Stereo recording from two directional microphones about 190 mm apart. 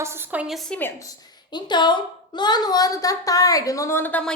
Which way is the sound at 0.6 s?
10° left (ahead or behind).